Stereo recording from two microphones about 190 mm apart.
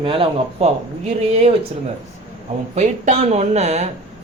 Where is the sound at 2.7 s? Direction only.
35° right (ahead or behind).